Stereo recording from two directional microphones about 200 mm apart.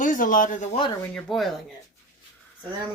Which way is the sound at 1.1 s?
Centre (ahead or behind).